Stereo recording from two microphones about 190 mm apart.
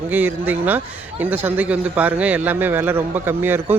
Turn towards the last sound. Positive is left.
turn(degrees=-10)  # may be behind; listen again after turning